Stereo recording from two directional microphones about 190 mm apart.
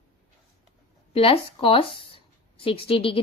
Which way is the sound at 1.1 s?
30° left (ahead or behind).